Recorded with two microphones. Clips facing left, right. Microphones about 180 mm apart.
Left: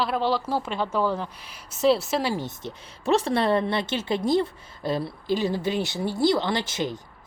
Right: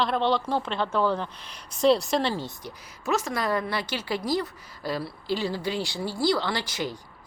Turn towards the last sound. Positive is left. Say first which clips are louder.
# left 3 dB
turn(degrees=20)  # may be behind; listen again after turning